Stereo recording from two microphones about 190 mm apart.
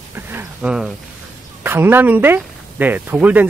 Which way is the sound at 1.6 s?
10° right (ahead or behind).